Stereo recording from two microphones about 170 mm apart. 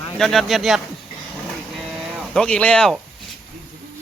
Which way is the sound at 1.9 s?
5° left (ahead or behind).